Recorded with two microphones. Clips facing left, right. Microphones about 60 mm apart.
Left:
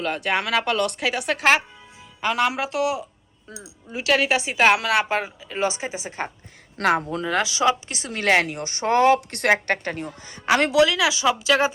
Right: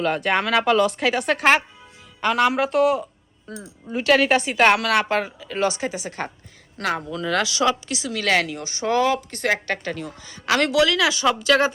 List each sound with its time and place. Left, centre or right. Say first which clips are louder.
0.0 s a woman's voice: right 3 dB; centre
6.8 s speech: left 4 dB; left
7.2 s a woman's voice: right 1 dB; left
7.9 s speech: left 1 dB; left
9.5 s a woman's voice: left 3 dB; left; by 11.7 s centre